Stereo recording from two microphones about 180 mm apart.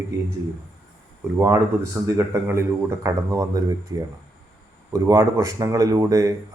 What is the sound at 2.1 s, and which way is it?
Speech, 15° right (ahead or behind).